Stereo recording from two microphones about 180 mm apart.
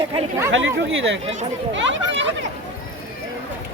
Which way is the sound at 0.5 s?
90° right.